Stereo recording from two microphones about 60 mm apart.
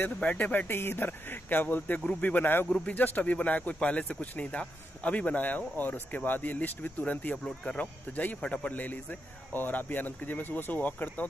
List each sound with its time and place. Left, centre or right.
0.0 s speech: left
0.7 s speech: left